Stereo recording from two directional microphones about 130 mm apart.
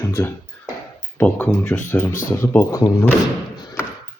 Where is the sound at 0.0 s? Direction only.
25° left (ahead or behind).